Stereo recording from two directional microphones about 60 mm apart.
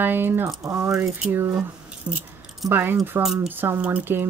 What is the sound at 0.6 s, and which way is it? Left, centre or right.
Speech, right.